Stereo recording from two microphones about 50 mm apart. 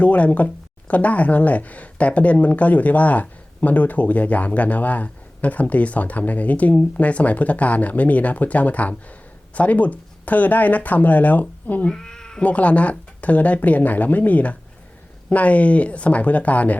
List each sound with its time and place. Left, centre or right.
0.0 s speech: left
11.9 s cat: centre
12.4 s speech: left